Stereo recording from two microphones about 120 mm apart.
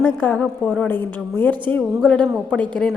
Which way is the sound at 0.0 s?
15° left (ahead or behind).